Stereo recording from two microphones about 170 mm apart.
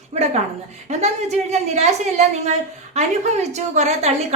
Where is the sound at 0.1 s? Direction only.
40° right (ahead or behind).